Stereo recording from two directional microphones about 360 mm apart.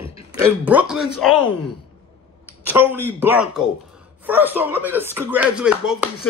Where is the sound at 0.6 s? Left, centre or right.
Centre.